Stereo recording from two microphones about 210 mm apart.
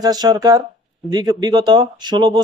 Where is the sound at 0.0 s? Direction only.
20° right (ahead or behind).